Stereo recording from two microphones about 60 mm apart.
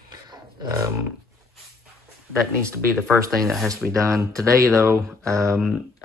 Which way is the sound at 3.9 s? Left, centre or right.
Right.